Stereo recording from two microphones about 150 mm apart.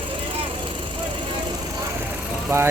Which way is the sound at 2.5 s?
15° right (ahead or behind).